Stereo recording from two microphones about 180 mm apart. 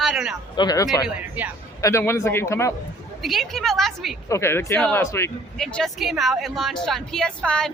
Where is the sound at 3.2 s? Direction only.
Centre (ahead or behind).